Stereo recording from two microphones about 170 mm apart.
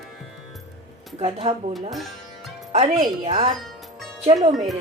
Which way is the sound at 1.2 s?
40° right (ahead or behind).